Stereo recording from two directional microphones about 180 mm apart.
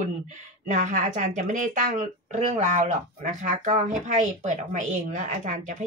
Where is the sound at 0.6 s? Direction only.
40° right (ahead or behind).